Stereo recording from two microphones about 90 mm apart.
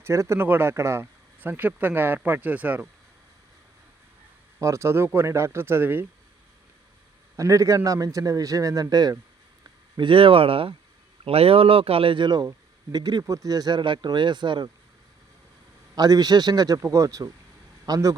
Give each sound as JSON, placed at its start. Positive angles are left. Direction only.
{"t": 0.0, "sound": "speech", "side_deg": -30}
{"t": 4.6, "sound": "speech", "side_deg": -35}
{"t": 7.3, "sound": "speech", "side_deg": -40}
{"t": 10.0, "sound": "a man's voice", "side_deg": -75}
{"t": 13.2, "sound": "speech", "side_deg": -40}
{"t": 16.0, "sound": "a man's voice", "side_deg": -50}